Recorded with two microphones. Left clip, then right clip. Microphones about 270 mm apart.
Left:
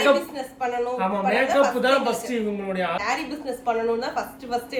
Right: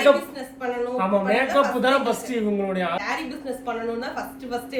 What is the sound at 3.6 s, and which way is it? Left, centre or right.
Speech, centre.